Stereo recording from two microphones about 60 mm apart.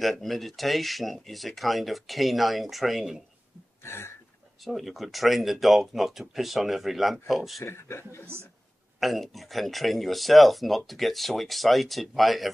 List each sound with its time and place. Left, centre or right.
0.0 s speech: centre
3.8 s a sound: left
4.6 s speech: centre
7.6 s speech: left
9.0 s speech: centre